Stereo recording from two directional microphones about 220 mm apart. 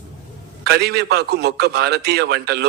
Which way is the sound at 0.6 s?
50° right (ahead or behind).